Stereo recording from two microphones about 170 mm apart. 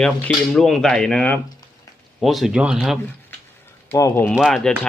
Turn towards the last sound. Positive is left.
turn(degrees=0)  # may be behind; listen again after turning